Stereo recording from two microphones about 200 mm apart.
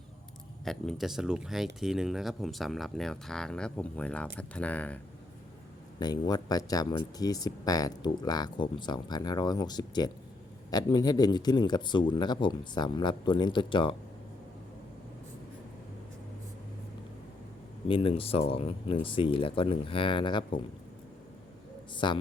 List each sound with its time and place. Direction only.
0.6 s speech: centre (ahead or behind)
6.0 s speech: 20° left (ahead or behind)
17.8 s speech: 25° left (ahead or behind)
21.9 s a woman's voice: 25° left (ahead or behind)